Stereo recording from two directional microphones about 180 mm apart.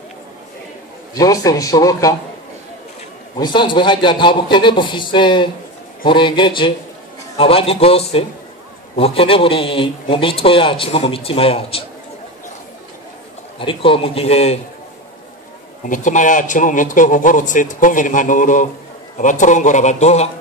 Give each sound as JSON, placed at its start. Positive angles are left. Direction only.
{"t": 1.1, "sound": "a man's voice", "side_deg": 20}
{"t": 3.3, "sound": "a man's voice", "side_deg": 25}
{"t": 13.6, "sound": "a man's voice", "side_deg": 30}
{"t": 15.8, "sound": "a man's voice", "side_deg": 45}